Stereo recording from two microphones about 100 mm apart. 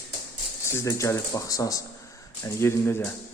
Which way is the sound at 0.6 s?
30° left (ahead or behind).